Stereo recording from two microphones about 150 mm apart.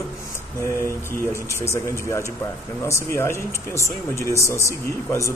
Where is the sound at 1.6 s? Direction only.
20° left (ahead or behind).